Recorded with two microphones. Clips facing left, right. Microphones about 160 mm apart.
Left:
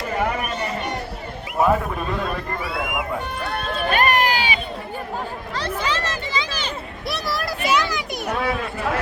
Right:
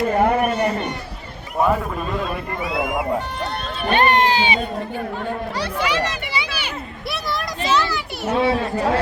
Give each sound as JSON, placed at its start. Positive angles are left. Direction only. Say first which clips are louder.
{"t": 0.2, "sound": "a sound", "louder": "right 5 dB", "side_deg": -50}
{"t": 1.5, "sound": "a man's voice", "louder": "even", "side_deg": 5}
{"t": 2.6, "sound": "speech", "louder": "right 6 dB", "side_deg": -25}
{"t": 3.9, "sound": "run", "louder": "right 4 dB", "side_deg": -25}
{"t": 5.5, "sound": "a sound", "louder": "right 1 dB", "side_deg": -10}
{"t": 7.1, "sound": "children playing", "louder": "left 1 dB", "side_deg": 0}
{"t": 8.3, "sound": "chatter", "louder": "right 6 dB", "side_deg": -25}